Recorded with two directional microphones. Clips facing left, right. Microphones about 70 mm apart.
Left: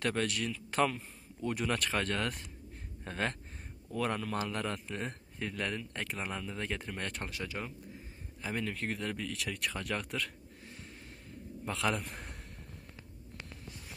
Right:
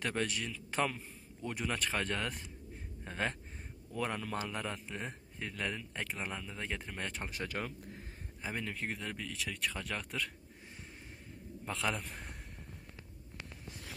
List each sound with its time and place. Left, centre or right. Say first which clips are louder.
0.0 s a man's voice: left 3 dB; centre
7.3 s speech: right 1 dB; right
8.4 s a man's voice: left 3 dB; centre
11.7 s a man's voice: left 2 dB; centre
12.0 s a man's voice: left 2 dB; centre